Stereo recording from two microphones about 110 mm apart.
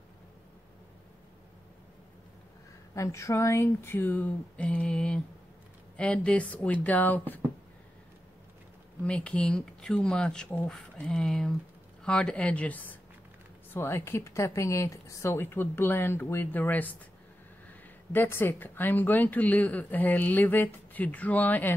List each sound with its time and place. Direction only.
2.9 s speech: 30° left (ahead or behind)
9.0 s speech: 10° left (ahead or behind)